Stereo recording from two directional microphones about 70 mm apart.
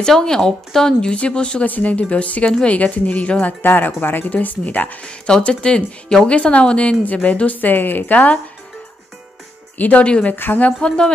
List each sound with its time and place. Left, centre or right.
0.0 s speech: centre; by 4.9 s left
5.0 s speech: centre
9.8 s speech: left
10.3 s speech: left
10.8 s speech: centre